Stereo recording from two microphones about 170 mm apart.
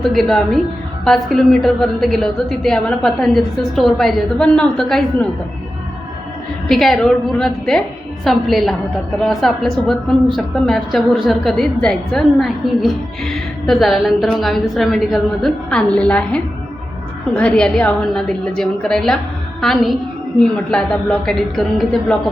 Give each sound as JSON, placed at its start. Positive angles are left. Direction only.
{"t": 0.0, "sound": "a woman's voice", "side_deg": 0}
{"t": 6.7, "sound": "a woman's voice", "side_deg": 0}